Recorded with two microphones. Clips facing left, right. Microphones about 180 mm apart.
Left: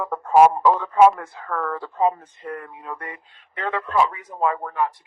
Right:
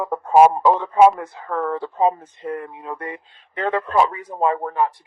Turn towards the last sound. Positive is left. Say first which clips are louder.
# right 3 dB
turn(degrees=-35)  # may be behind; listen again after turning